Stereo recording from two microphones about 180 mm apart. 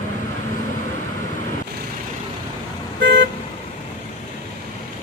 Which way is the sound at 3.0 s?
70° right (ahead or behind).